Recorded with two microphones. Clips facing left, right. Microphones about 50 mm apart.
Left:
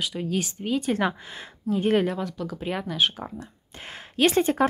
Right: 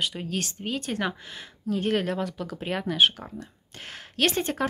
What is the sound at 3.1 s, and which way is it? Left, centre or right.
Speech, centre.